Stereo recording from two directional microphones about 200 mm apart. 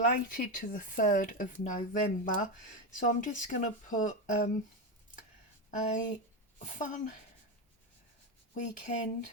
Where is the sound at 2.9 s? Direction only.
40° left (ahead or behind).